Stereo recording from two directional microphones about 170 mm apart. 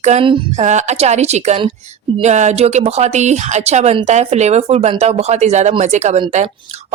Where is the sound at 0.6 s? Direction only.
45° right (ahead or behind).